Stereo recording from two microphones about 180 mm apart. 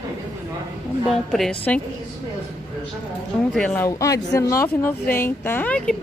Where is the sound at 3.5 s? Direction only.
5° left (ahead or behind).